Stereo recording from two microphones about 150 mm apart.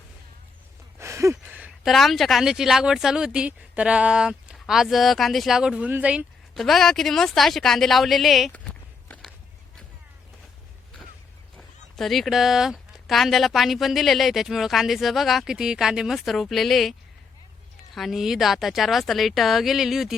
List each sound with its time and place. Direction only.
0.9 s a sound: 20° right (ahead or behind)
1.9 s speech: centre (ahead or behind)
8.5 s walk: 10° left (ahead or behind)
11.5 s speech: centre (ahead or behind)
17.9 s speech: centre (ahead or behind)